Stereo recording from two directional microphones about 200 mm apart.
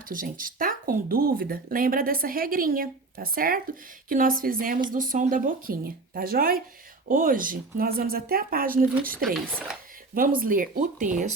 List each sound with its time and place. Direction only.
0.1 s speech: 45° right (ahead or behind)
10.4 s speech: 45° right (ahead or behind)